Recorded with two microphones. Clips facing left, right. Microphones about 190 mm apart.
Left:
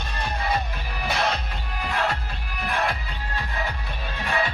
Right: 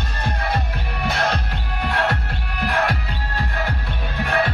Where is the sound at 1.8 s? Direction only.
70° right (ahead or behind).